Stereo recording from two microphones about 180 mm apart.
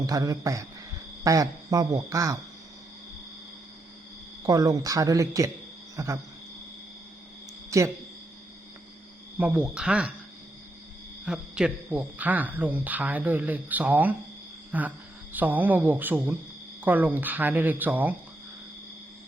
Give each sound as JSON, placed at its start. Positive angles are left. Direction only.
{"t": 0.0, "sound": "speech", "side_deg": -20}
{"t": 4.4, "sound": "speech", "side_deg": -20}
{"t": 7.7, "sound": "speech", "side_deg": -15}
{"t": 9.4, "sound": "speech", "side_deg": -5}
{"t": 11.3, "sound": "speech", "side_deg": -5}